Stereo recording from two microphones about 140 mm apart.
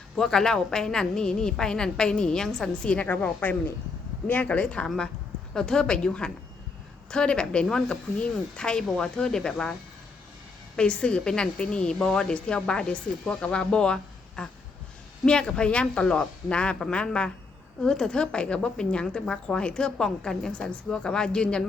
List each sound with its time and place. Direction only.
0.2 s a woman's voice: 5° left (ahead or behind)
10.8 s a woman's voice: 5° left (ahead or behind)